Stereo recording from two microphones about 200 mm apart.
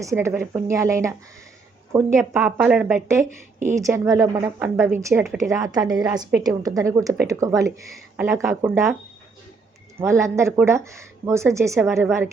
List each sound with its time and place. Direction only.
0.0 s a woman's voice: 15° right (ahead or behind)
3.8 s a woman's voice: 15° right (ahead or behind)
10.0 s a woman's voice: 15° right (ahead or behind)